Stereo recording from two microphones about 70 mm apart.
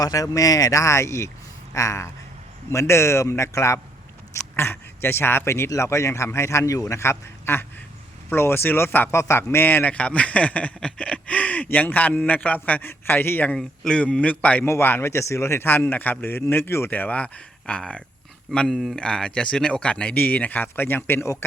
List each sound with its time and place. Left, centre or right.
0.0 s speech: left
4.5 s speech: left
9.1 s a man's voice: left
13.6 s speech: centre
14.6 s speech: left
16.9 s a man's voice: left